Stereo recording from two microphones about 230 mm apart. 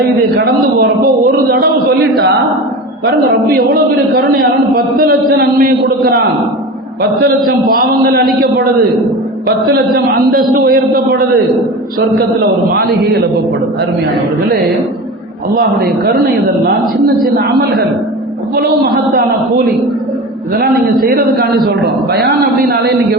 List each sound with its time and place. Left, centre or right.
0.3 s a man's voice: right
4.1 s a man's voice: right
7.3 s a man's voice: right
14.5 s a man's voice: right
18.5 s a man's voice: right